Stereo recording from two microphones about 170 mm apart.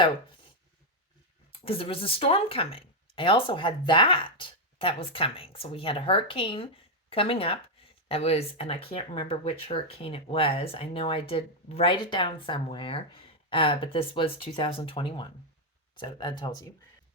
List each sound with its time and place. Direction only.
1.6 s speech: 35° left (ahead or behind)